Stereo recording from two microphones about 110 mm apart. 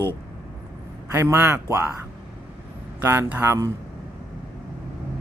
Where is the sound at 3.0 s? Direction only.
25° right (ahead or behind).